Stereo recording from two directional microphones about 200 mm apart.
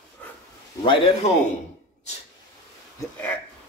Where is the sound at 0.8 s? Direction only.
25° left (ahead or behind).